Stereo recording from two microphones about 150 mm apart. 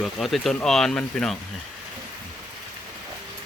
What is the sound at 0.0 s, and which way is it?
Speech, centre (ahead or behind).